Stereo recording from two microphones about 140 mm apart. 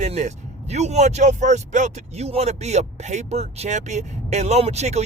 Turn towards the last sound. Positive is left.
turn(degrees=-50)  # may be behind; listen again after turning